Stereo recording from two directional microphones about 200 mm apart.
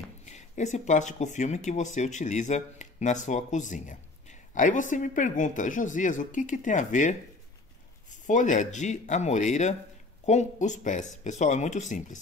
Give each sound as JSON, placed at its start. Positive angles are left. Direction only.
{"t": 0.2, "sound": "speech", "side_deg": 35}
{"t": 8.3, "sound": "speech", "side_deg": 40}